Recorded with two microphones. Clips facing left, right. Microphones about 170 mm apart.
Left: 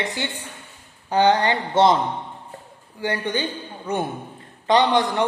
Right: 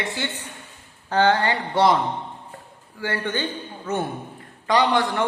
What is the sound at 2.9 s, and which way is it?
A man's voice, 20° left (ahead or behind).